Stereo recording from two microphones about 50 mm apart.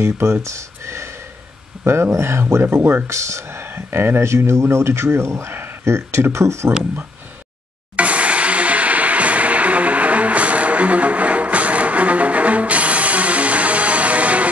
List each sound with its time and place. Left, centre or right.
0.0 s speech: right
2.5 s speech: right
3.1 s speech: right
5.5 s a sound: right
6.2 s speech: right
7.9 s music: right